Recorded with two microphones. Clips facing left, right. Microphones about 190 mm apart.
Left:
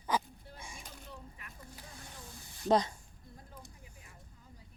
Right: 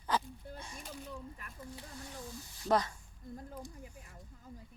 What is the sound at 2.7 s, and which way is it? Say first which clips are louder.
Speech: left 2 dB; 20° left (ahead or behind).